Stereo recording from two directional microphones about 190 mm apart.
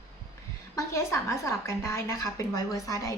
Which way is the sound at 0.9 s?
15° left (ahead or behind).